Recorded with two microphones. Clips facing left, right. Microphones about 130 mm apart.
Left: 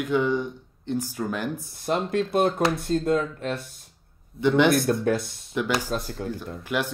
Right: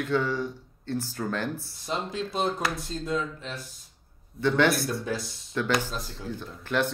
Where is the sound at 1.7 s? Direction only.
55° left (ahead or behind).